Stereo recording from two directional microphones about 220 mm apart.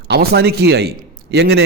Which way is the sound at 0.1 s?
45° right (ahead or behind).